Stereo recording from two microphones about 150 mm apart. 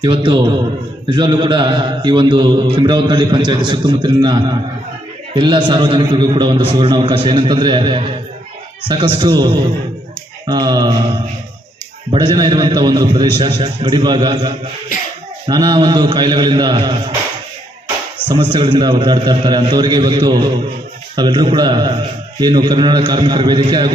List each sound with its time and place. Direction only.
0.0 s a man's voice: 35° right (ahead or behind)
12.1 s a man's voice: 30° right (ahead or behind)
18.3 s a man's voice: 35° right (ahead or behind)